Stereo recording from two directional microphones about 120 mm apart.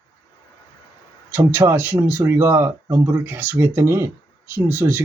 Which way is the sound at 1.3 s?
15° right (ahead or behind).